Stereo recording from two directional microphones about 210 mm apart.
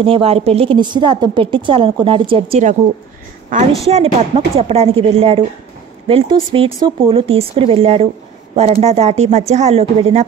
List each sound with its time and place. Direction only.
0.0 s a woman's voice: 25° right (ahead or behind)
3.8 s a woman's voice: 30° right (ahead or behind)